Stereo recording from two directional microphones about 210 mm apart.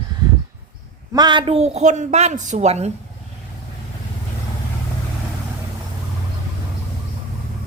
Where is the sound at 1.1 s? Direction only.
20° right (ahead or behind).